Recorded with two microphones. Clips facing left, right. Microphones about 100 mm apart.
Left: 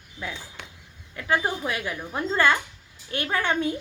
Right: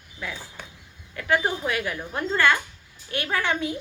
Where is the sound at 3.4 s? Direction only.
45° left (ahead or behind).